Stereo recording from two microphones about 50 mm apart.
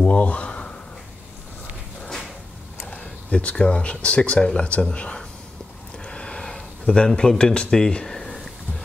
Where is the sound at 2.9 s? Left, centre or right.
Left.